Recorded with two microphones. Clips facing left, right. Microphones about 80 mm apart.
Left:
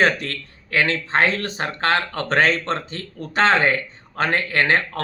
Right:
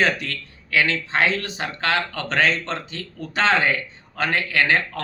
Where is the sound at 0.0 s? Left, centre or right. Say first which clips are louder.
Left 3 dB; left.